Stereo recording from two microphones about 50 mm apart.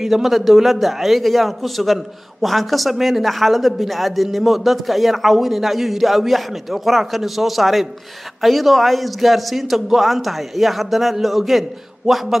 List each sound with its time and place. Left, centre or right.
0.0 s speech: centre